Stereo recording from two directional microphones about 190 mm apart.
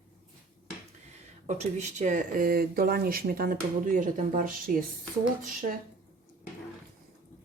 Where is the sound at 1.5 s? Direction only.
40° right (ahead or behind).